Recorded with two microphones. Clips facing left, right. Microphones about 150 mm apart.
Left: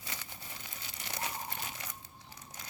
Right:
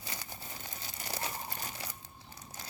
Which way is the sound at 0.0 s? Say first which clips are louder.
Right 2 dB; 40° right (ahead or behind).